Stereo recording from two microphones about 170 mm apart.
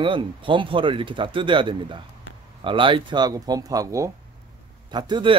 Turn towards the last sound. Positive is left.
turn(degrees=-30)  # may be behind; listen again after turning